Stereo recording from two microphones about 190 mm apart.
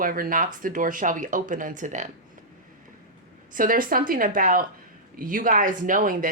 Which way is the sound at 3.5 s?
45° right (ahead or behind).